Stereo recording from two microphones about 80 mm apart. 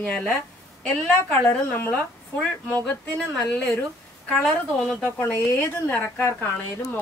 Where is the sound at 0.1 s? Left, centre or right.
Centre.